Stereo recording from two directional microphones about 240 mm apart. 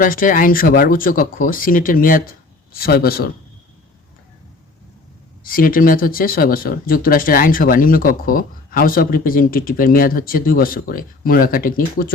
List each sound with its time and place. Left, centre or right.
0.0 s speech: left
5.4 s speech: left